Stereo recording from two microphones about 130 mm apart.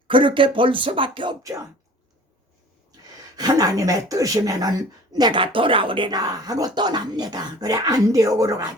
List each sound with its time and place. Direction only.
0.1 s speech: 40° right (ahead or behind)
3.3 s speech: 30° right (ahead or behind)